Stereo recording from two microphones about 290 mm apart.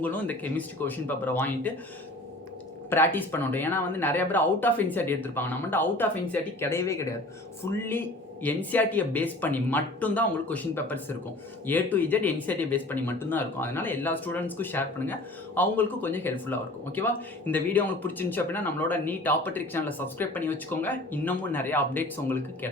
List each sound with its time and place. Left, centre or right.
0.0 s a man's voice: centre
2.9 s a man's voice: centre